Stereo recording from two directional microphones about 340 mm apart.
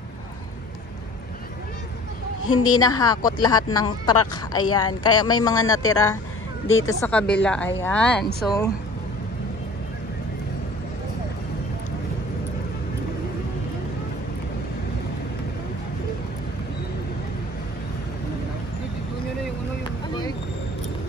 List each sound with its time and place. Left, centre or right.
2.5 s a woman's voice: left
2.8 s speech: centre